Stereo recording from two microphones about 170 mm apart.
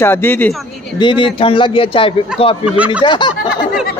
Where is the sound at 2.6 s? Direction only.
5° right (ahead or behind).